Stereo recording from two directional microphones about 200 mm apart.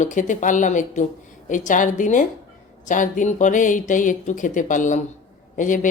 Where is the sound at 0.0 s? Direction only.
40° left (ahead or behind).